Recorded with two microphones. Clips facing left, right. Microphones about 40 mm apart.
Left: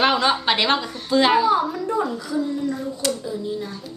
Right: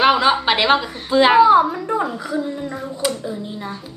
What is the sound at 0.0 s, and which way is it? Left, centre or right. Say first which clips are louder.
A woman's voice: right 4 dB; centre.